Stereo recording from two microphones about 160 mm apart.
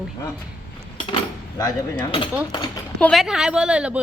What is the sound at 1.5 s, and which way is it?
Mechanisms, 20° left (ahead or behind).